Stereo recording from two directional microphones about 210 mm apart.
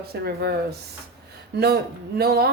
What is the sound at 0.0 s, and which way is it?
Speech, 50° right (ahead or behind).